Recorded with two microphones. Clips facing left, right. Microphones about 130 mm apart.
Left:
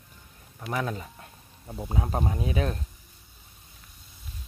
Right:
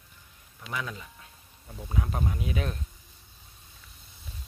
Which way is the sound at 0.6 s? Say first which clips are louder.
Left 6 dB; 40° left (ahead or behind).